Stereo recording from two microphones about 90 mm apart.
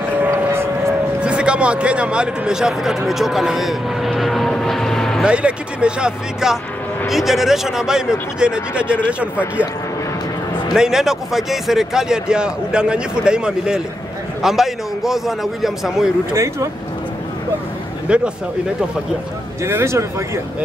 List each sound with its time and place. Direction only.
0.2 s vehicle: 25° right (ahead or behind)
1.2 s a man's voice: 10° right (ahead or behind)
3.1 s vehicle: 5° right (ahead or behind)
5.2 s speech: 10° right (ahead or behind)
10.7 s speech: 5° right (ahead or behind)
18.0 s speech: 10° right (ahead or behind)
19.6 s speech: 30° right (ahead or behind)